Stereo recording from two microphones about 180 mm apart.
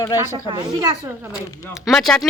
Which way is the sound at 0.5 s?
20° right (ahead or behind).